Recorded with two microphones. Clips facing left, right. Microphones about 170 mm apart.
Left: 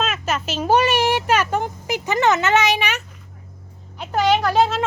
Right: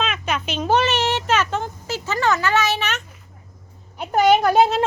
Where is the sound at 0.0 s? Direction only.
5° left (ahead or behind).